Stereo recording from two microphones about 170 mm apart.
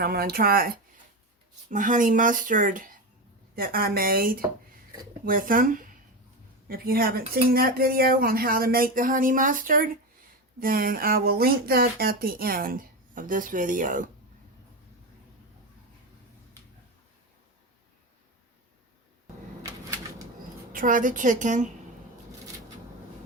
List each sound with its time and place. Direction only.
0.0 s speech: 65° right (ahead or behind)
1.7 s speech: 50° right (ahead or behind)
20.7 s speech: 50° right (ahead or behind)